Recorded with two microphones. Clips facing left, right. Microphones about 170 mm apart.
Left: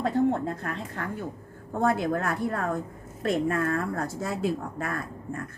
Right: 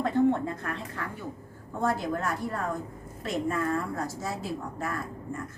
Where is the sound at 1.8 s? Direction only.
60° left (ahead or behind).